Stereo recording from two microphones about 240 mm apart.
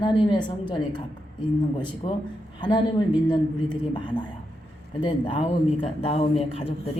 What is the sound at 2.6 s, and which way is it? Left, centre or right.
A man's voice, centre.